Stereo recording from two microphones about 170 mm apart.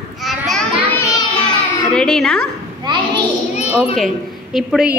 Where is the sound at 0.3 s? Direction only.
Centre (ahead or behind).